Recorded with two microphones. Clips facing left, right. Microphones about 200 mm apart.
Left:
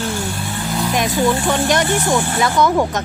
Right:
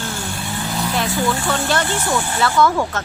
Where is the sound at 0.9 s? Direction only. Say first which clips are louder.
Left 4 dB; 15° left (ahead or behind).